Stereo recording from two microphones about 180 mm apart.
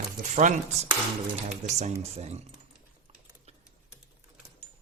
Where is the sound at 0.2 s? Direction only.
45° right (ahead or behind).